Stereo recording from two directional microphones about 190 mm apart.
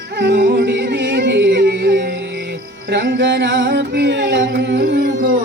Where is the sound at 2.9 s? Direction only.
60° right (ahead or behind).